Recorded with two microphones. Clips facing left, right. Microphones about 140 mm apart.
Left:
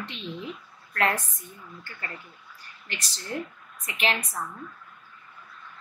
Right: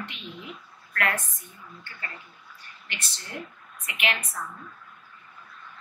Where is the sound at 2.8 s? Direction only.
35° left (ahead or behind).